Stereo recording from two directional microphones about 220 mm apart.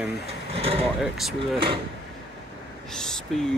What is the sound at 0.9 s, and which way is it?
Speech, centre (ahead or behind).